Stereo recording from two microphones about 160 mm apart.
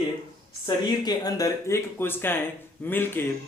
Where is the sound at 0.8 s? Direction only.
25° left (ahead or behind).